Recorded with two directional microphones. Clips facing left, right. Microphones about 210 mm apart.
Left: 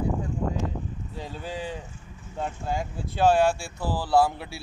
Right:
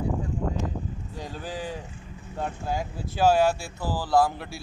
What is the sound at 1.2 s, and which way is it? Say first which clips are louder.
Speech: even; centre (ahead or behind).